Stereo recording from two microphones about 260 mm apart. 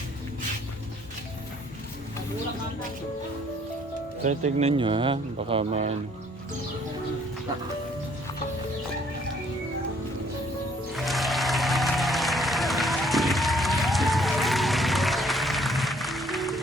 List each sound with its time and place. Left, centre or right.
4.2 s speech: right
10.9 s music: centre